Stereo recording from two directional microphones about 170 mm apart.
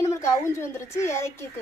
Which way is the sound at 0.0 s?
15° left (ahead or behind).